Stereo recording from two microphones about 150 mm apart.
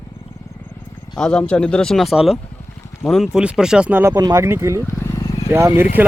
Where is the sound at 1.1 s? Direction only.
5° left (ahead or behind); by 4.8 s 20° right (ahead or behind).